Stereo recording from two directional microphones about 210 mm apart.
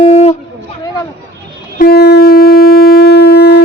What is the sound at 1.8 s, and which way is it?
Shofar, 50° left (ahead or behind).